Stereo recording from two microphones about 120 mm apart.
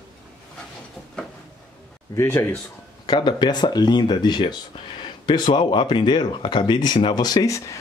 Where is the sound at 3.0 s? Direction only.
35° left (ahead or behind).